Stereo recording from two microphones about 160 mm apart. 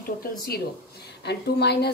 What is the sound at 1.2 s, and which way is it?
Speech, 90° left.